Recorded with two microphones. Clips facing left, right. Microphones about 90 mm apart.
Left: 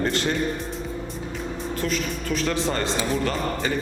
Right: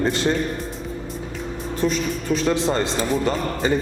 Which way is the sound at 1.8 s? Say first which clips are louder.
Right 6 dB; 20° right (ahead or behind).